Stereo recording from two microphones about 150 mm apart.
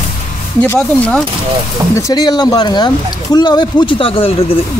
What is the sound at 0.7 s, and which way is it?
Speech, 5° left (ahead or behind).